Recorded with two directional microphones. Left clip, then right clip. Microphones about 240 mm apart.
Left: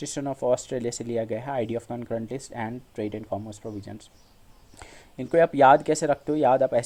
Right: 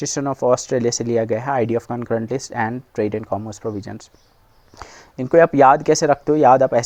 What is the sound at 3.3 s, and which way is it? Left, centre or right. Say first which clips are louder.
Speech: right 8 dB; right.